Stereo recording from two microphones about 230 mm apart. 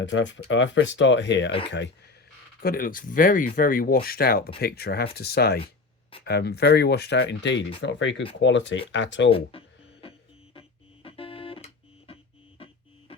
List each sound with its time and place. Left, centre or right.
0.0 s speech: left
2.6 s speech: left
9.3 s cash register: left
11.0 s music: left